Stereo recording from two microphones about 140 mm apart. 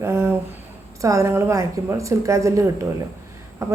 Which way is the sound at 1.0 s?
20° right (ahead or behind).